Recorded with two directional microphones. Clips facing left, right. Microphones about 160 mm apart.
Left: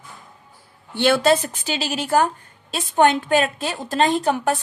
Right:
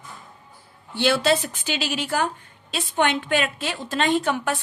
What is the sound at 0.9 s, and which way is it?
A woman's voice, 55° left (ahead or behind).